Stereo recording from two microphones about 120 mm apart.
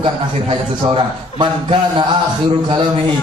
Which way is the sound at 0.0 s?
45° right (ahead or behind).